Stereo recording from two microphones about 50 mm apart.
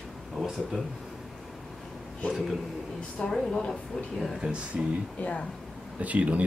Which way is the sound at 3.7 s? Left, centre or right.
Centre.